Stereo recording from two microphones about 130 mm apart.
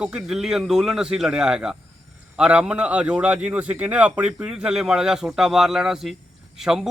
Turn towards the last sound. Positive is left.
turn(degrees=0)  # may be behind; listen again after turning